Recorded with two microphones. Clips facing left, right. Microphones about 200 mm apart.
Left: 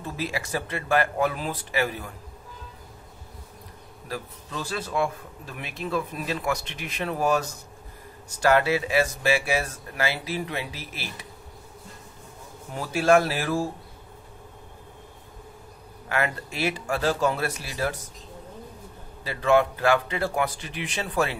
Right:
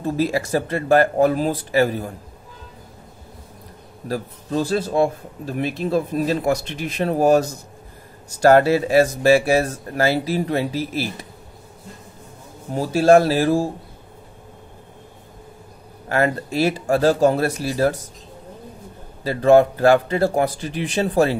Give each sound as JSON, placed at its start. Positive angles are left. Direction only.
{"t": 0.0, "sound": "a man's voice", "side_deg": -40}
{"t": 4.1, "sound": "a man's voice", "side_deg": -40}
{"t": 12.7, "sound": "a man's voice", "side_deg": -35}
{"t": 16.1, "sound": "a man's voice", "side_deg": -40}
{"t": 19.2, "sound": "a man's voice", "side_deg": -40}